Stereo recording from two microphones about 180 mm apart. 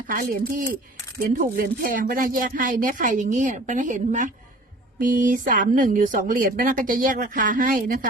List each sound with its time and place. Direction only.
0.1 s speech: 50° right (ahead or behind)